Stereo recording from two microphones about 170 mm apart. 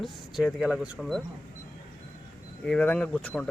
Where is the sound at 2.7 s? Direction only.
5° left (ahead or behind).